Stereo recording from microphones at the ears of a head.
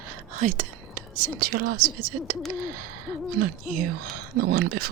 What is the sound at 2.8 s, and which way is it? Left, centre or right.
Hoot, right.